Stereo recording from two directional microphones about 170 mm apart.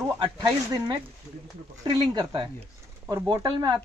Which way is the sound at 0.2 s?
30° right (ahead or behind).